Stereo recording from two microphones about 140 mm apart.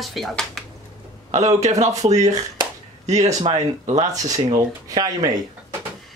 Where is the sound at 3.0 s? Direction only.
55° right (ahead or behind).